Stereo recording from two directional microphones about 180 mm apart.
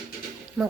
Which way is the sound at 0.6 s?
5° right (ahead or behind).